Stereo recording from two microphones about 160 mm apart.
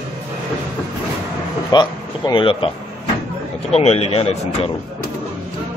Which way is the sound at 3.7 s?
40° left (ahead or behind).